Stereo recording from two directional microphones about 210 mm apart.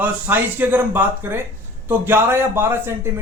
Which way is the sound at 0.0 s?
10° right (ahead or behind).